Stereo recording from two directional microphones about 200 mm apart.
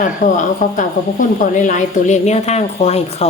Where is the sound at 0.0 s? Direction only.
40° left (ahead or behind).